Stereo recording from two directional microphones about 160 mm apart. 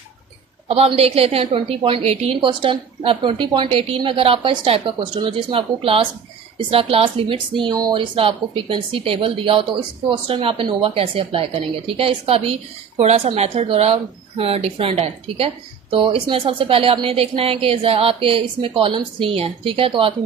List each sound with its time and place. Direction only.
0.7 s a woman's voice: 40° right (ahead or behind)